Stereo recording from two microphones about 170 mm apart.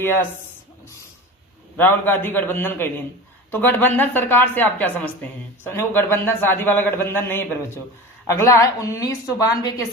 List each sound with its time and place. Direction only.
0.0 s a man's voice: 15° left (ahead or behind)
1.7 s a man's voice: 10° left (ahead or behind)